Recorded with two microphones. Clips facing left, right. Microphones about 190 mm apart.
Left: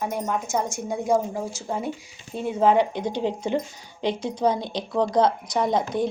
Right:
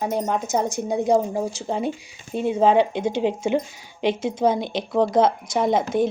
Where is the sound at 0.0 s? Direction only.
30° right (ahead or behind).